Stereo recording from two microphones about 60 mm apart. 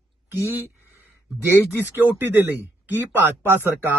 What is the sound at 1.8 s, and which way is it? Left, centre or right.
Speech, right.